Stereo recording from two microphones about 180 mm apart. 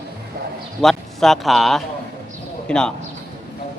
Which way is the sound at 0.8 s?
Centre (ahead or behind).